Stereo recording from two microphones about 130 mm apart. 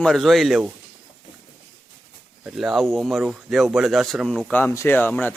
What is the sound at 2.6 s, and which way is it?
Speech, 5° right (ahead or behind).